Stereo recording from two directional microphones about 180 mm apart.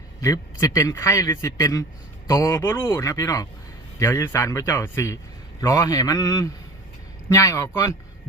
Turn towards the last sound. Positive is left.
turn(degrees=20)  # may be behind; listen again after turning